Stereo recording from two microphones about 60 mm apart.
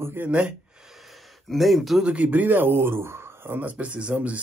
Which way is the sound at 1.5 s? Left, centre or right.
Centre.